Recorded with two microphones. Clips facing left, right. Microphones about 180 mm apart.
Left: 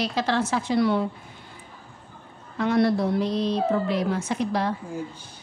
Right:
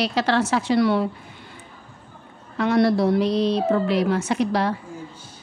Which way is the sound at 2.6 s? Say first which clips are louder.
Right 3 dB; 75° right (ahead or behind).